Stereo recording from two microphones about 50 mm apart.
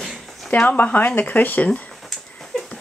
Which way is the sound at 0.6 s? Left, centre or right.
Left.